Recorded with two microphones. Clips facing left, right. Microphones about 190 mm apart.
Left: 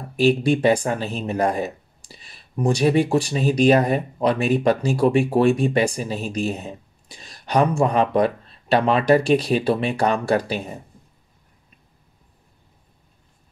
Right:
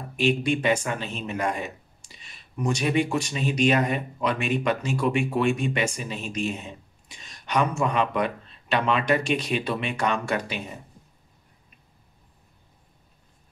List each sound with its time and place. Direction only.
0.1 s speech: 35° left (ahead or behind)